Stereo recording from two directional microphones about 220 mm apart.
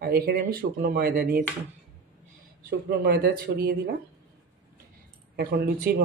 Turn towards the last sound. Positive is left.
turn(degrees=-45)  # may be behind; listen again after turning